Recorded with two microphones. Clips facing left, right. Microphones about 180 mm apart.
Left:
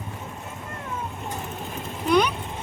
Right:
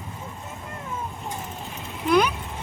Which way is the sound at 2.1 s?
Centre (ahead or behind).